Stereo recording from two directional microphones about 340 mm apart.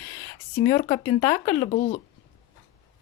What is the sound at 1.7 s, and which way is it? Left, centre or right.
Speech, left.